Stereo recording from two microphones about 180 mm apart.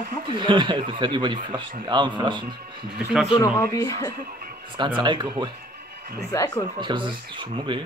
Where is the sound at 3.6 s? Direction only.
15° left (ahead or behind).